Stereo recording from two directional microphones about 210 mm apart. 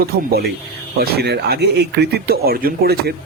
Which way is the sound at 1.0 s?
50° right (ahead or behind).